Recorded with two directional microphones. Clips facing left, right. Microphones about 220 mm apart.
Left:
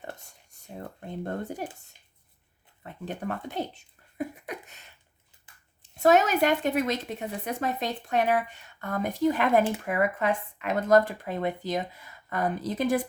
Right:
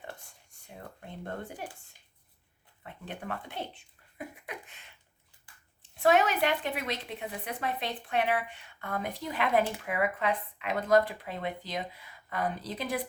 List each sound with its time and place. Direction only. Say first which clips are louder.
0.8 s speech: left 7 dB; 40° left (ahead or behind)
2.8 s speech: left 6 dB; 40° left (ahead or behind)
4.4 s a sound: left 5 dB; 40° left (ahead or behind)
6.0 s speech: left 4 dB; 40° left (ahead or behind)